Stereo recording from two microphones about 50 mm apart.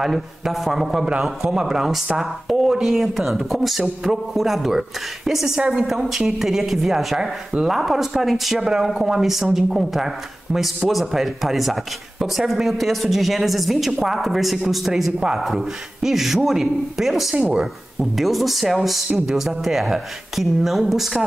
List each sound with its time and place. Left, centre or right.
0.0 s speech: centre
18.1 s speech: centre